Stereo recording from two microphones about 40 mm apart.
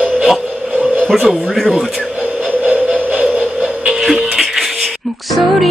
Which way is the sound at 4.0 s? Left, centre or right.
Centre.